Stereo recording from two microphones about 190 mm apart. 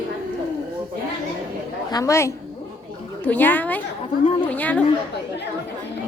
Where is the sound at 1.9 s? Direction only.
15° left (ahead or behind).